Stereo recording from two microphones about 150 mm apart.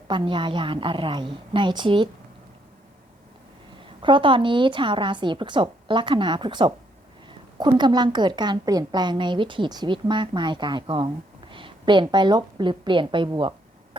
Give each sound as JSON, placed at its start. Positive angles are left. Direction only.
{"t": 0.1, "sound": "a woman's voice", "side_deg": -30}
{"t": 4.0, "sound": "a woman's voice", "side_deg": -35}